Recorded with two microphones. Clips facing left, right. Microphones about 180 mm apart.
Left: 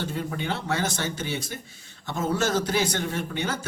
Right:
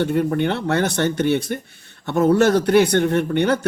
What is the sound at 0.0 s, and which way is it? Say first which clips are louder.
Speech: right 11 dB; 60° right (ahead or behind).